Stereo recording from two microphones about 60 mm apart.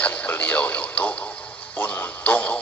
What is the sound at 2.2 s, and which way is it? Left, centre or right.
Radio, left.